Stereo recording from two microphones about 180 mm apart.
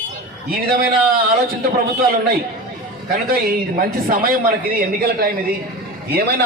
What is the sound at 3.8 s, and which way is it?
A man's voice, 50° right (ahead or behind).